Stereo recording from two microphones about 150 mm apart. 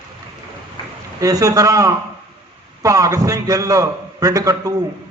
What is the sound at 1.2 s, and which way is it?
A man's voice, 20° right (ahead or behind).